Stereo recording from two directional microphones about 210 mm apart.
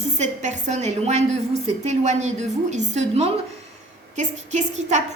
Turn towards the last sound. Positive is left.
turn(degrees=-35)  # may be behind; listen again after turning